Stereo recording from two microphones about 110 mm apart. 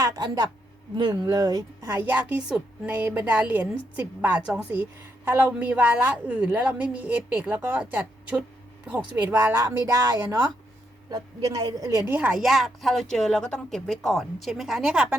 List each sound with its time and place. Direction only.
0.0 s speech: 35° right (ahead or behind)
2.0 s a woman's voice: 15° right (ahead or behind)
11.3 s speech: 40° right (ahead or behind)
12.1 s speech: 10° right (ahead or behind)